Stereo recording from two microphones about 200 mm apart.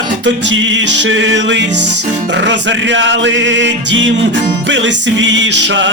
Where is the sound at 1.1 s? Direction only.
70° right (ahead or behind).